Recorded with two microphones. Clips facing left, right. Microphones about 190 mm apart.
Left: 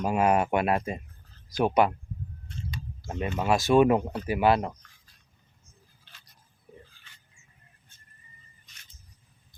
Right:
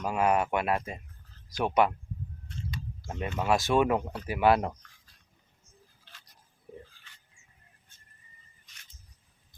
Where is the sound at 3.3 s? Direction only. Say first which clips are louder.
Left 4 dB; 5° left (ahead or behind).